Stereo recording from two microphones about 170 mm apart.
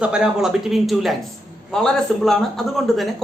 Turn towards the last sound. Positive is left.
turn(degrees=0)  # may be behind; listen again after turning